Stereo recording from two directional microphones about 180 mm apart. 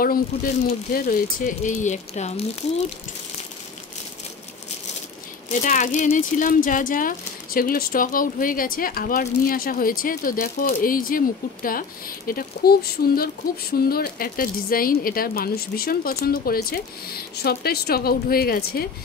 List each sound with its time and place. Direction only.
0.9 s speech: 50° left (ahead or behind)
5.5 s speech: 45° left (ahead or behind)